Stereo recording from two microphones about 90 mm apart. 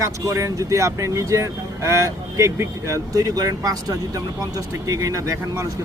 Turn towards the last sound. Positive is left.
turn(degrees=-40)  # may be behind; listen again after turning